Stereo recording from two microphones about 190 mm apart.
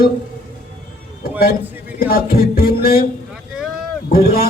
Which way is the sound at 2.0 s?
50° left (ahead or behind).